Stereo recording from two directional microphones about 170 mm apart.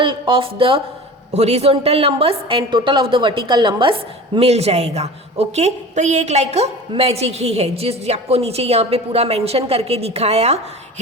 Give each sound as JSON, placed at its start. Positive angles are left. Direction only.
{"t": 0.0, "sound": "a woman's voice", "side_deg": -30}